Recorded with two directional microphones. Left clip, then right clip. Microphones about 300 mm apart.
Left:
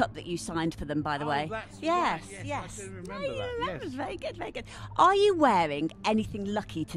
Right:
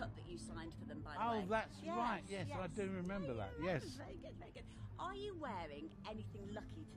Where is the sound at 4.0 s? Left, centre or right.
Left.